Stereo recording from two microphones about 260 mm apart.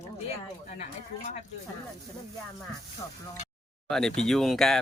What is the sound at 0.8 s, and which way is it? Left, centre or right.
Speech, left.